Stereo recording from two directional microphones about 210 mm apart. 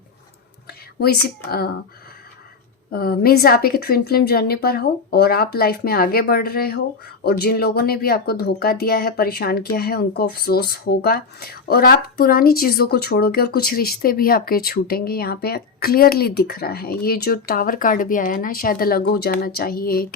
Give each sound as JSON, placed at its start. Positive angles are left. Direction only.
{"t": 0.7, "sound": "a woman's voice", "side_deg": 50}
{"t": 2.9, "sound": "speech", "side_deg": 45}